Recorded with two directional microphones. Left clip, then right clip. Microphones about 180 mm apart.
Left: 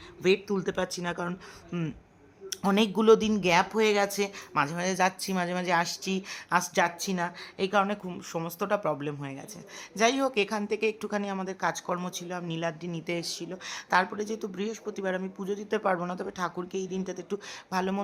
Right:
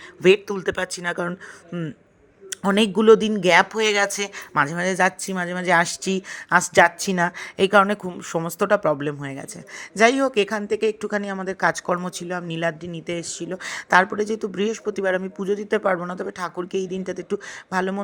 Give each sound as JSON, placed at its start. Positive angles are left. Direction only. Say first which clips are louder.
{"t": 0.2, "sound": "speech", "louder": "right 9 dB", "side_deg": -35}
{"t": 2.5, "sound": "speech", "louder": "right 6 dB", "side_deg": -25}
{"t": 3.4, "sound": "speech", "louder": "right 7 dB", "side_deg": -35}
{"t": 5.3, "sound": "speech", "louder": "right 4 dB", "side_deg": -15}
{"t": 5.6, "sound": "speech", "louder": "right 11 dB", "side_deg": -35}
{"t": 13.6, "sound": "speech", "louder": "right 9 dB", "side_deg": -30}